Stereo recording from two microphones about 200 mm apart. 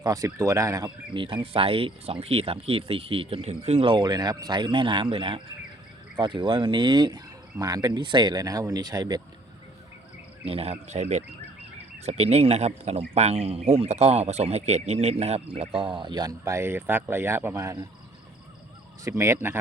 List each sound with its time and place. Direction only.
0.0 s speech: 15° right (ahead or behind)
10.4 s speech: 30° right (ahead or behind)
19.0 s speech: 15° right (ahead or behind)